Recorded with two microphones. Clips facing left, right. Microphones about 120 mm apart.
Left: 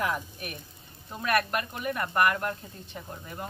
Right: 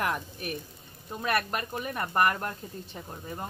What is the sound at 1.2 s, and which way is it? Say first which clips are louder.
Speech: left 2 dB; 30° right (ahead or behind).